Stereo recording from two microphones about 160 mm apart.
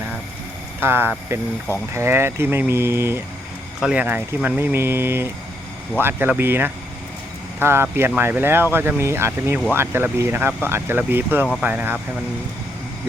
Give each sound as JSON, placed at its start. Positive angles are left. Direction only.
{"t": 0.8, "sound": "speech", "side_deg": -15}